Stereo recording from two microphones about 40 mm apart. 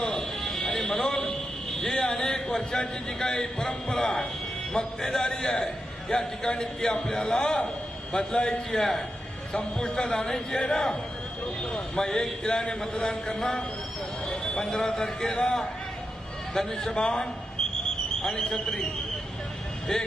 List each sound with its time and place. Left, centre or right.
0.1 s a sound: centre
0.6 s fire alarm: centre
1.8 s a man's voice: centre
8.8 s speech: centre
16.6 s a man's voice: centre
17.6 s a sound: centre
18.2 s speech: centre
19.9 s speech: centre